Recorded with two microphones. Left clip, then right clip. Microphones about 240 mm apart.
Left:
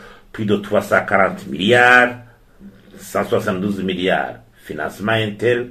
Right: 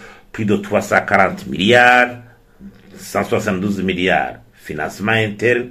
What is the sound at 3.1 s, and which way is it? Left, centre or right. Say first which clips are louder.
Speech: even; right.